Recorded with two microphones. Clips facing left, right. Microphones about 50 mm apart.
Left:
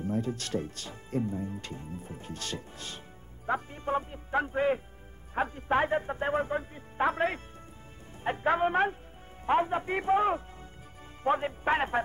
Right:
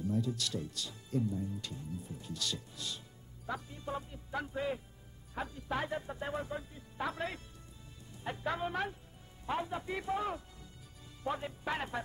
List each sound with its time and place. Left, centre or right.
0.0 s speech: left